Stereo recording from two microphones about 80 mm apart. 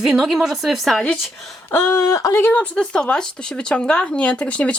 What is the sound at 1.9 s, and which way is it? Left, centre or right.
Speech, left.